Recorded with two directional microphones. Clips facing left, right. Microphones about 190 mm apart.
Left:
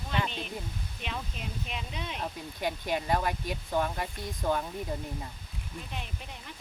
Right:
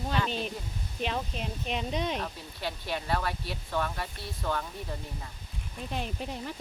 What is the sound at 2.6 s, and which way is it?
Speech, 15° left (ahead or behind).